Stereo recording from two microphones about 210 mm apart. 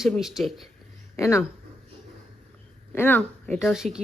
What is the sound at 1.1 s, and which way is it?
Speech, 15° left (ahead or behind).